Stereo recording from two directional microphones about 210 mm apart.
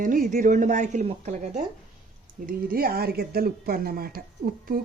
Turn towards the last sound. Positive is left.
turn(degrees=-45)  # may be behind; listen again after turning